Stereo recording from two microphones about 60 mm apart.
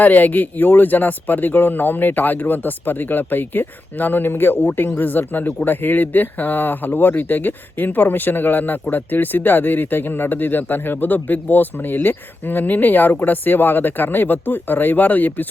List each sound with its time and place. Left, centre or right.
0.0 s speech: left